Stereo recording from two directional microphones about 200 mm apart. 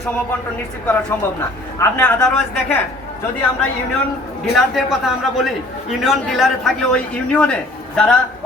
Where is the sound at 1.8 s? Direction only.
10° left (ahead or behind).